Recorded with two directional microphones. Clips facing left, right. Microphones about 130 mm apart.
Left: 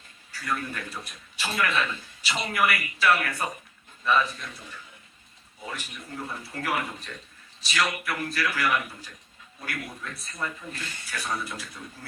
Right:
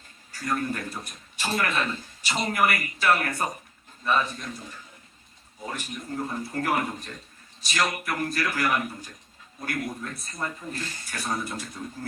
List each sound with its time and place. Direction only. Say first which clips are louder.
0.3 s a man's voice: right 3 dB; 40° right (ahead or behind)